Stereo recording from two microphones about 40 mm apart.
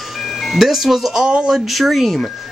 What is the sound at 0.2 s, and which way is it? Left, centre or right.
Speech, centre.